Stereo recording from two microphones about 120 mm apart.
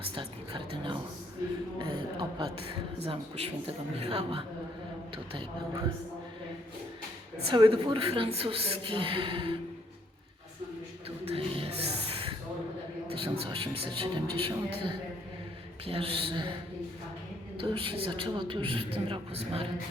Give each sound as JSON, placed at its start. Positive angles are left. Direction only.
{"t": 0.1, "sound": "music", "side_deg": -45}
{"t": 1.8, "sound": "a sound", "side_deg": -40}
{"t": 3.0, "sound": "a woman's voice", "side_deg": -55}
{"t": 7.5, "sound": "a woman's voice", "side_deg": -40}
{"t": 11.3, "sound": "a sound", "side_deg": -50}
{"t": 13.1, "sound": "a woman's voice", "side_deg": -50}
{"t": 17.6, "sound": "a woman's voice", "side_deg": -50}